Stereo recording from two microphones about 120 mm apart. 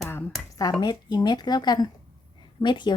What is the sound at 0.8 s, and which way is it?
Speech, 35° left (ahead or behind).